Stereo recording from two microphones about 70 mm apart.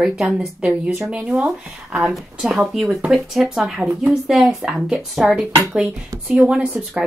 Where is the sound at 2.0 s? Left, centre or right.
Centre.